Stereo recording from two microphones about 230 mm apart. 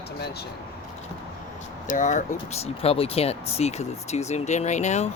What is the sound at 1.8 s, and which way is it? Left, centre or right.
Speech, left.